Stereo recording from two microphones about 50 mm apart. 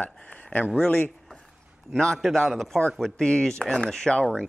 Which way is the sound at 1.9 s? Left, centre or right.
Centre.